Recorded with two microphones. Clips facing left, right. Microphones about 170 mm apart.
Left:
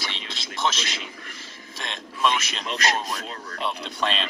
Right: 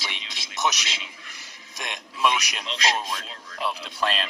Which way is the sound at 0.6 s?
10° right (ahead or behind).